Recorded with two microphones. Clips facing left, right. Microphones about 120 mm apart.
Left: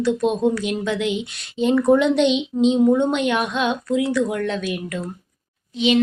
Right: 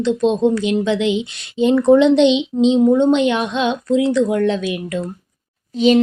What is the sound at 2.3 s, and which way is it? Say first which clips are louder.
Child singing: right 4 dB; 90° right.